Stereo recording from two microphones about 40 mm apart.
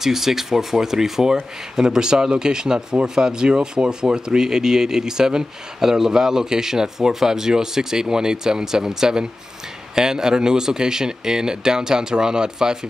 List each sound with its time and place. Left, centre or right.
0.0 s speech: centre